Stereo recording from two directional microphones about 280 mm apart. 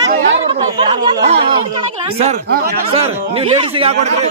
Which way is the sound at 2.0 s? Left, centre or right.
Right.